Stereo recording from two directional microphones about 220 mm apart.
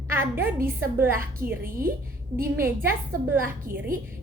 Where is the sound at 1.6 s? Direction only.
40° right (ahead or behind).